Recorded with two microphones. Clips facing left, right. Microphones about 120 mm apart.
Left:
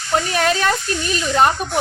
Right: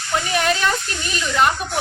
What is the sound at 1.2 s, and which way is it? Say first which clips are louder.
Speech: left 3 dB; 35° left (ahead or behind).